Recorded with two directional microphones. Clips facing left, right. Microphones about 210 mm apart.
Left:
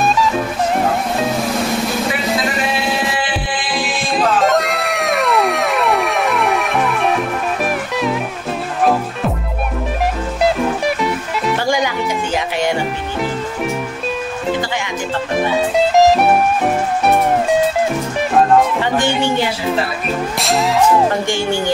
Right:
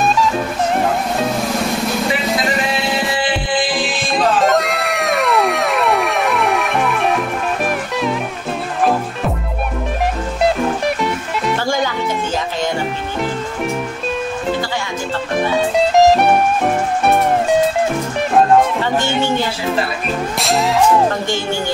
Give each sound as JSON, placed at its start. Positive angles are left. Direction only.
{"t": 0.0, "sound": "music", "side_deg": 0}
{"t": 4.4, "sound": "music", "side_deg": 0}
{"t": 10.4, "sound": "music", "side_deg": 0}
{"t": 11.5, "sound": "music", "side_deg": 15}
{"t": 15.3, "sound": "music", "side_deg": 0}
{"t": 18.8, "sound": "music", "side_deg": 15}
{"t": 20.3, "sound": "music", "side_deg": 0}
{"t": 21.3, "sound": "music", "side_deg": 15}